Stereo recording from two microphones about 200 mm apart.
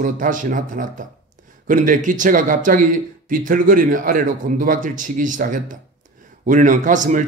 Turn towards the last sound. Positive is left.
turn(degrees=-40)  # may be behind; listen again after turning